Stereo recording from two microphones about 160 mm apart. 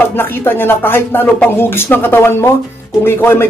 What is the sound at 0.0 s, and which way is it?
Speech, 15° left (ahead or behind).